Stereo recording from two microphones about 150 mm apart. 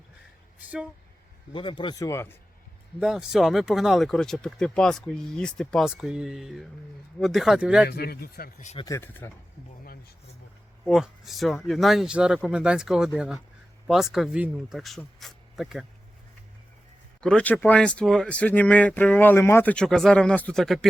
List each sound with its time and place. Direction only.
1.5 s speech: 35° left (ahead or behind); by 2.4 s 15° left (ahead or behind)
3.0 s speech: 5° right (ahead or behind)
7.9 s a man's voice: 90° left
8.8 s speech: 20° left (ahead or behind)
10.8 s speech: centre (ahead or behind)
17.2 s speech: 5° left (ahead or behind)